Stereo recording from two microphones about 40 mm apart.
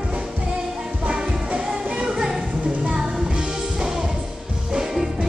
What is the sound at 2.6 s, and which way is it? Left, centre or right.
Music, right.